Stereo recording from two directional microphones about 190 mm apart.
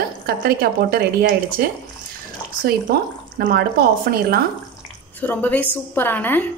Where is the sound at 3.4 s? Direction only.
55° right (ahead or behind).